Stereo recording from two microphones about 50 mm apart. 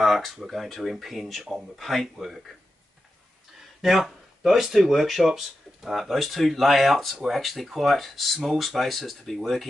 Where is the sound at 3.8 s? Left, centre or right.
Centre.